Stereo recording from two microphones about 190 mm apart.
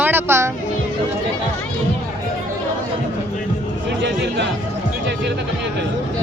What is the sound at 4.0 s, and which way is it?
Chatter, 65° right (ahead or behind).